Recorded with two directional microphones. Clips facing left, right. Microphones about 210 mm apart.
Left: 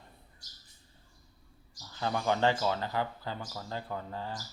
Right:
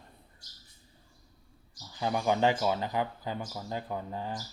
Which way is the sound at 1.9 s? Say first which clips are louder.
Right 2 dB; 15° right (ahead or behind).